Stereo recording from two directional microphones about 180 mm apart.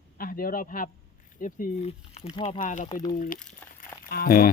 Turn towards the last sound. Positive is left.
turn(degrees=55)  # may be behind; listen again after turning